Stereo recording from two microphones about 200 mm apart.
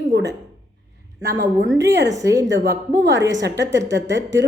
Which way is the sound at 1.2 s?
55° right (ahead or behind).